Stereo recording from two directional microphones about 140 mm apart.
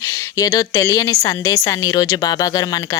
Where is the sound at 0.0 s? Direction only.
25° left (ahead or behind).